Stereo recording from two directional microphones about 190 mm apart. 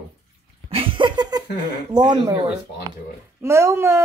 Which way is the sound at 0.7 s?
30° right (ahead or behind).